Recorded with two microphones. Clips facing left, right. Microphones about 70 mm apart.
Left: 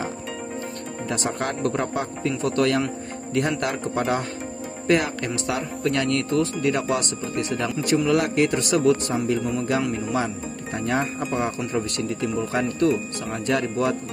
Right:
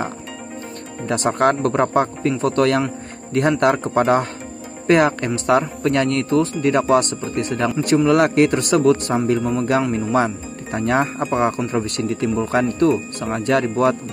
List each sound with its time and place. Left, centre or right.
1.0 s speech: right
6.6 s speech: right
10.1 s speech: right